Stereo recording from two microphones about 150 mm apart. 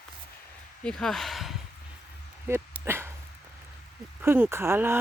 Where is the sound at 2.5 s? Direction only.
15° right (ahead or behind).